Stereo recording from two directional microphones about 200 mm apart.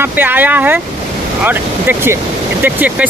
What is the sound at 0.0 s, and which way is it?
Speech, 10° right (ahead or behind).